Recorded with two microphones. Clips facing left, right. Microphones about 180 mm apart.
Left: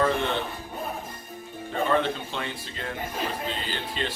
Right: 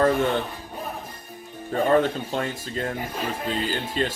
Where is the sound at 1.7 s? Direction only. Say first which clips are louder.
Right 5 dB; 45° right (ahead or behind).